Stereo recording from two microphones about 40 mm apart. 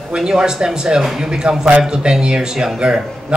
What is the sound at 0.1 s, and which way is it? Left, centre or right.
A man's voice, centre.